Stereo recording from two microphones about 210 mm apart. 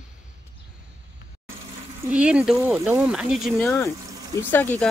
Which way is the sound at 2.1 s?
5° right (ahead or behind).